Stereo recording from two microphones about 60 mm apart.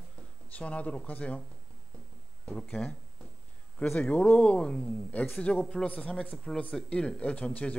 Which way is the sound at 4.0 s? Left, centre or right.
Left.